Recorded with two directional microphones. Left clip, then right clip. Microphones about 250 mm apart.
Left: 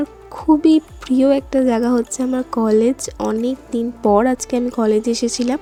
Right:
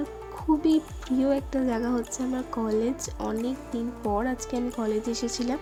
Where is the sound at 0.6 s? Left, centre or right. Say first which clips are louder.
Left 10 dB; left.